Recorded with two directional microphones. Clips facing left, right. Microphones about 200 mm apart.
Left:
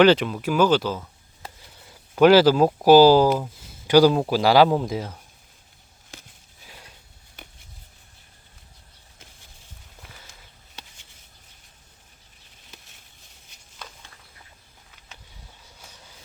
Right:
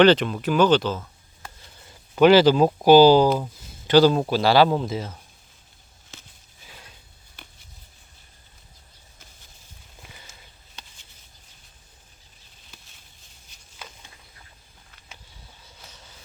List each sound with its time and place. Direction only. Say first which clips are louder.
0.0 s speech: even; 5° left (ahead or behind)
13.8 s walk: left 1 dB; 10° right (ahead or behind)
15.9 s vehicle: even; 15° left (ahead or behind)